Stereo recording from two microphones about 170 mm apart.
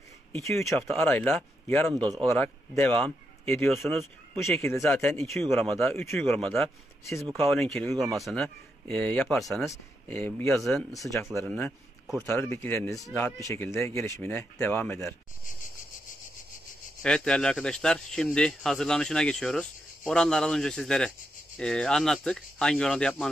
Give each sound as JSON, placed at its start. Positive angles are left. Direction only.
{"t": 0.6, "sound": "speech", "side_deg": 0}
{"t": 3.7, "sound": "speech", "side_deg": 0}
{"t": 4.4, "sound": "speech", "side_deg": 15}
{"t": 5.3, "sound": "speech", "side_deg": 0}
{"t": 7.9, "sound": "speech", "side_deg": -20}
{"t": 8.2, "sound": "speech", "side_deg": 0}
{"t": 9.7, "sound": "speech", "side_deg": 10}
{"t": 10.5, "sound": "speech", "side_deg": 0}
{"t": 11.3, "sound": "speech", "side_deg": 15}
{"t": 17.0, "sound": "speech", "side_deg": 5}